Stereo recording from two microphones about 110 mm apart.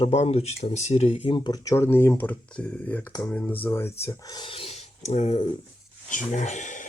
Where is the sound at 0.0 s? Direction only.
70° left (ahead or behind).